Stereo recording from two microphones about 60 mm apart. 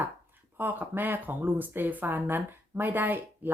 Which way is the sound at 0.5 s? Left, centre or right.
Right.